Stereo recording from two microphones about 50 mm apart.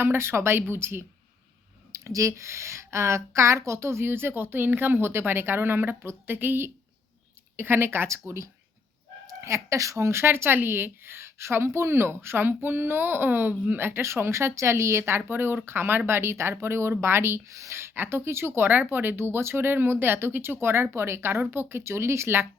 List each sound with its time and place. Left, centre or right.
0.0 s speech: right
1.9 s speech: right
9.4 s speech: right
13.7 s speech: right
15.3 s speech: right
17.6 s speech: right
18.7 s speech: right